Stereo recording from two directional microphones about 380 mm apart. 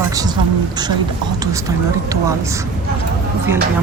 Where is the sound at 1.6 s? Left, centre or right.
Centre.